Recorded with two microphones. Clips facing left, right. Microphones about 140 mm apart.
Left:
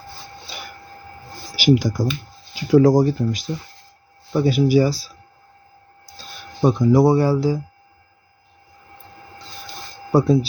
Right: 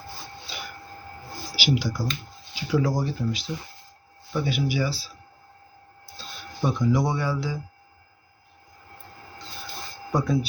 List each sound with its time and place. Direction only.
1.5 s speech: 45° left (ahead or behind)
6.6 s speech: 35° left (ahead or behind)
10.1 s speech: 30° left (ahead or behind)